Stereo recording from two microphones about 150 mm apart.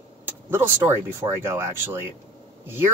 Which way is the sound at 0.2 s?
15° right (ahead or behind).